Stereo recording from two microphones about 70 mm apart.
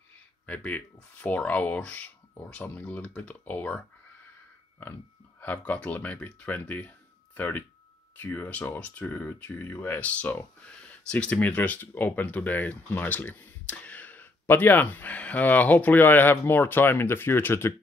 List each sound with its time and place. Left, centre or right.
0.5 s speech: left
5.4 s speech: left